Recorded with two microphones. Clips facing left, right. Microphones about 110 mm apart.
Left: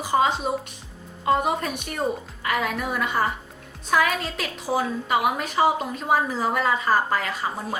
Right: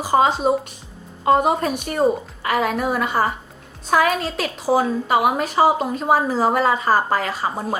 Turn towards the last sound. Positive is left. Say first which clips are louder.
# right 4 dB
turn(degrees=-35)  # may be behind; listen again after turning